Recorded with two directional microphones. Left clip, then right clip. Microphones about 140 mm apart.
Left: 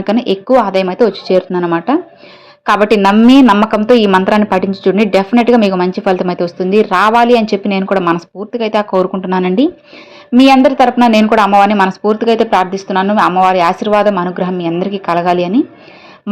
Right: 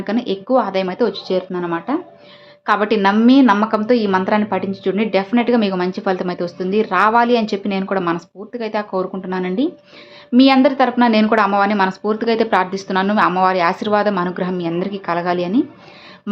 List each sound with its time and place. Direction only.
0.0 s a woman's voice: 35° left (ahead or behind)
10.3 s speech: 25° left (ahead or behind)